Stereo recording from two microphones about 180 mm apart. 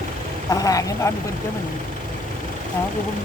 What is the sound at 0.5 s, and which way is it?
Speech, 20° left (ahead or behind).